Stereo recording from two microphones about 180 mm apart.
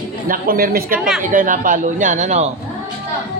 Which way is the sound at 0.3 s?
55° right (ahead or behind).